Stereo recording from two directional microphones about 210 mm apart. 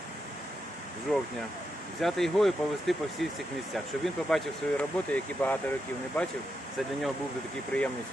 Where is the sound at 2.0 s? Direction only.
Centre (ahead or behind).